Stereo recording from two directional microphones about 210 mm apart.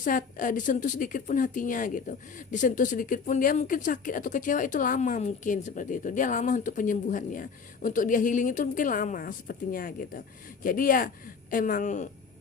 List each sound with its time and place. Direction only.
0.0 s a woman's voice: 40° left (ahead or behind)